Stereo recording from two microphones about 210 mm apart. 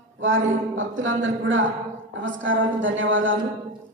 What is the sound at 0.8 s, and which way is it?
A woman's voice, 65° right (ahead or behind).